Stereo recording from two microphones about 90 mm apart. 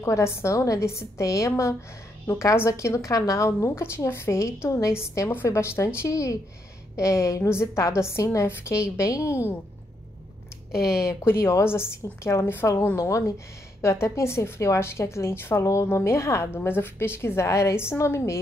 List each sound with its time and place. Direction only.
0.0 s a woman's voice: 30° left (ahead or behind)
10.7 s a woman's voice: 30° left (ahead or behind)